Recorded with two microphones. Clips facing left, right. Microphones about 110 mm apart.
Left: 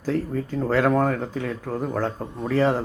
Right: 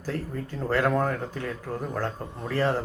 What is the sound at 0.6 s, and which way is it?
Speech, 10° left (ahead or behind).